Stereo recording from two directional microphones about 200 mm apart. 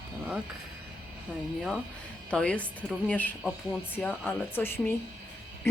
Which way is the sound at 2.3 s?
5° left (ahead or behind).